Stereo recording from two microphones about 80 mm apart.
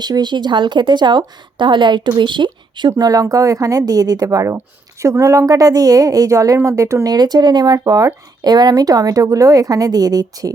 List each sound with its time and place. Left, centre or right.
0.0 s a woman's voice: right
2.9 s a woman's voice: right
7.1 s speech: right